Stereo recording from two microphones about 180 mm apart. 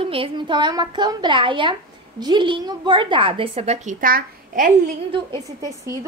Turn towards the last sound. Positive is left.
turn(degrees=-20)  # may be behind; listen again after turning